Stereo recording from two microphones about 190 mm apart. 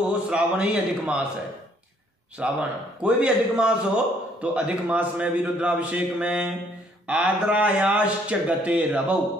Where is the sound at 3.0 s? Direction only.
5° right (ahead or behind).